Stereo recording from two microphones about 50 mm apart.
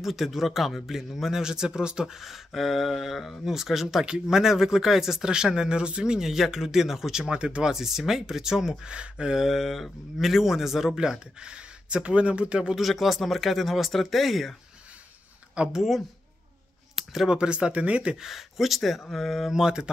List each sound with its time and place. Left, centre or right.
0.0 s a man's voice: centre
7.7 s a man's voice: centre
12.7 s speech: centre
15.7 s speech: centre
16.9 s a sound: centre
17.3 s speech: right
18.1 s speech: centre
19.5 s a man's voice: centre